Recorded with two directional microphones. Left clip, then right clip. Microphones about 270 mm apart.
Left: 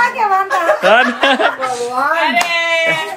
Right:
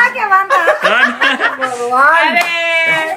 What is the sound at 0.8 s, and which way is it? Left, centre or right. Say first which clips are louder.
Speech: even; centre.